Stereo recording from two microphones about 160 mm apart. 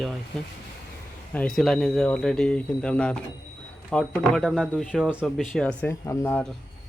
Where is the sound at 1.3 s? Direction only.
5° left (ahead or behind).